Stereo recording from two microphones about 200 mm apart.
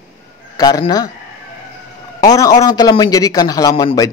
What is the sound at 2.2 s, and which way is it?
A man's voice, 20° left (ahead or behind).